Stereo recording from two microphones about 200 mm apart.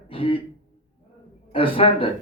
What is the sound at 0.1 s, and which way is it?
Throat clearing, 25° left (ahead or behind).